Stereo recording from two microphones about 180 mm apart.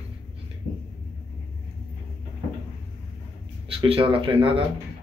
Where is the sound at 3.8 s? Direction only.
30° right (ahead or behind).